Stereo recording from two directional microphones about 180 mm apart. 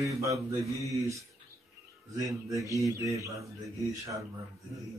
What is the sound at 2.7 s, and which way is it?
Speech, 15° right (ahead or behind).